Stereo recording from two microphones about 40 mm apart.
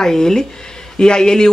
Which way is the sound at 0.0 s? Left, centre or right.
Centre.